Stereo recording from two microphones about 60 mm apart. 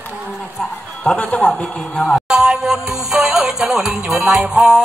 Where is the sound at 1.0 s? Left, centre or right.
Centre.